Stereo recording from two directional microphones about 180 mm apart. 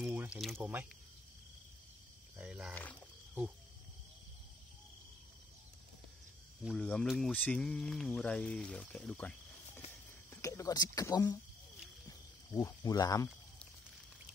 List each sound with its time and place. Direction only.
0.0 s a sound: 10° right (ahead or behind)
0.6 s speech: 10° right (ahead or behind)
2.3 s speech: 5° right (ahead or behind)
2.7 s speech: 10° left (ahead or behind)
6.6 s speech: centre (ahead or behind)
10.3 s speech: 15° left (ahead or behind)